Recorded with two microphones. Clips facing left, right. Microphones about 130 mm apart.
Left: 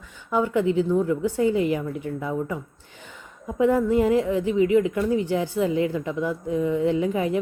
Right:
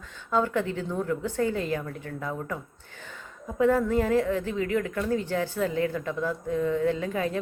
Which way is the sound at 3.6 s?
15° left (ahead or behind).